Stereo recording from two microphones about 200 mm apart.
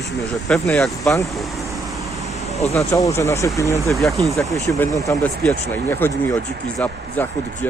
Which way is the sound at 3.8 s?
Centre (ahead or behind).